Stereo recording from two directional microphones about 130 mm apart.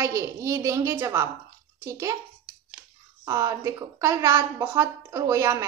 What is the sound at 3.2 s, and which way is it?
A woman's voice, 25° right (ahead or behind).